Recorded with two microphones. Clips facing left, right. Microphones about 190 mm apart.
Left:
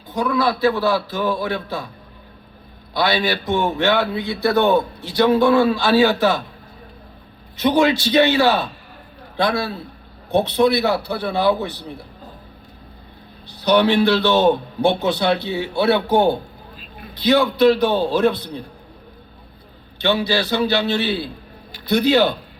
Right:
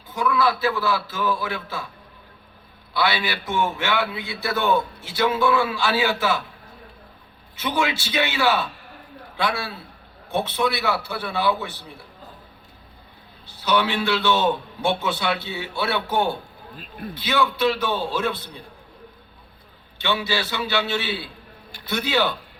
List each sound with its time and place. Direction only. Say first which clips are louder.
0.1 s a man's voice: left 2 dB; 35° left (ahead or behind)
2.9 s a man's voice: left 5 dB; 40° left (ahead or behind)
7.5 s a man's voice: left 9 dB; 40° left (ahead or behind)
13.6 s a man's voice: left 7 dB; 40° left (ahead or behind)
20.0 s a man's voice: left 6 dB; 40° left (ahead or behind)